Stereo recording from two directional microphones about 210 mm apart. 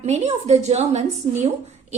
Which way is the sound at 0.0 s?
30° right (ahead or behind).